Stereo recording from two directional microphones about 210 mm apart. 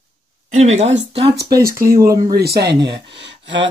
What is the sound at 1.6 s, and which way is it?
Speech, 45° right (ahead or behind).